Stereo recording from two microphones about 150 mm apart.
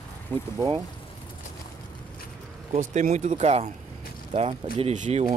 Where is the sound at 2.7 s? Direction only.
50° right (ahead or behind).